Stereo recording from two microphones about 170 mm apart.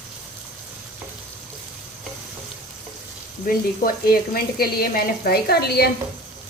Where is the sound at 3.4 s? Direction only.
60° left (ahead or behind).